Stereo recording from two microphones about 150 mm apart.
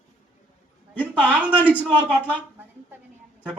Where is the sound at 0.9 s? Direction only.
10° right (ahead or behind).